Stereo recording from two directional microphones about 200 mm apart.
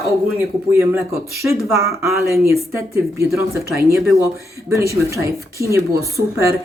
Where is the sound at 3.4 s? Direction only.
15° right (ahead or behind).